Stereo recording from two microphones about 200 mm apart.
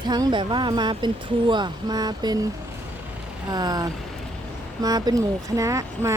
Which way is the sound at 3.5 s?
20° right (ahead or behind).